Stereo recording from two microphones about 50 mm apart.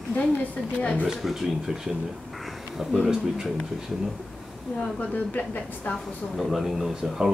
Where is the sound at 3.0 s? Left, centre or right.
Centre.